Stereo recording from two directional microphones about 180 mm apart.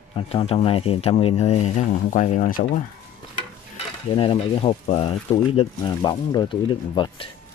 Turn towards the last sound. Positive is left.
turn(degrees=25)  # may be behind; listen again after turning